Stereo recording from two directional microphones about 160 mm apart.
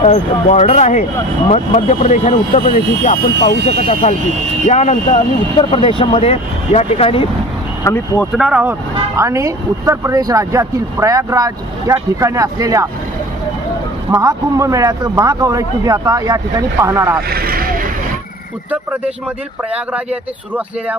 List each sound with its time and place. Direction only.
0.0 s speech: 45° left (ahead or behind)
4.6 s speech: 45° left (ahead or behind)
5.6 s speech: 35° left (ahead or behind)
7.8 s speech: 15° left (ahead or behind)
8.2 s speech: 5° right (ahead or behind)
9.1 s speech: 20° right (ahead or behind)
14.1 s speech: 20° right (ahead or behind)
17.3 s vehicle: 70° right (ahead or behind)
18.7 s speech: 10° right (ahead or behind)